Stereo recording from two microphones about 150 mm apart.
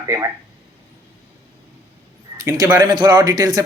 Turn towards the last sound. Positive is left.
turn(degrees=-25)  # may be behind; listen again after turning